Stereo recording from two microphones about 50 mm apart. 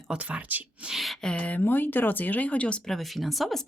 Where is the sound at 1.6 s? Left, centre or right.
Left.